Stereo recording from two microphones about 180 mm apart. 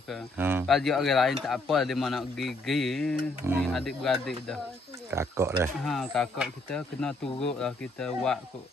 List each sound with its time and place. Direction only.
0.4 s speech: 10° right (ahead or behind)
0.7 s speech: centre (ahead or behind)
5.1 s speech: 15° right (ahead or behind)
5.9 s speech: centre (ahead or behind)